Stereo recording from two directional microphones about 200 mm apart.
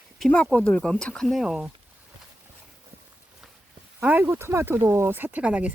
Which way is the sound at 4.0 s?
10° right (ahead or behind).